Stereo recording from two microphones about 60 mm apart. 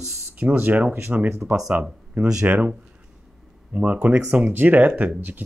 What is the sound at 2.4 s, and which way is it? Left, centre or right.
Speech, right.